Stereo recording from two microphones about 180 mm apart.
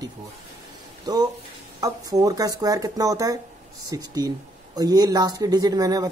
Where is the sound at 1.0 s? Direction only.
20° right (ahead or behind).